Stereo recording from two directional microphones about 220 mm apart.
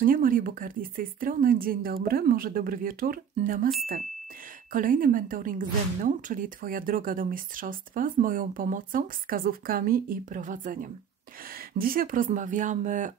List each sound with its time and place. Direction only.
0.0 s speech: 40° right (ahead or behind)
4.7 s speech: 40° right (ahead or behind)